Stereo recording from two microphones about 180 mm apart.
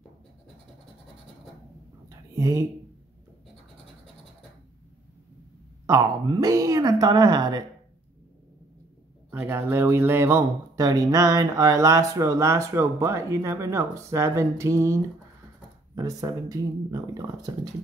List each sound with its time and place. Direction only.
2.0 s whispering: 15° right (ahead or behind)
5.9 s a woman's voice: 20° right (ahead or behind)
9.3 s a woman's voice: 10° right (ahead or behind)